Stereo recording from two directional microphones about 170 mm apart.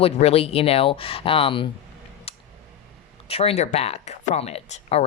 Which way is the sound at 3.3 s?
35° left (ahead or behind).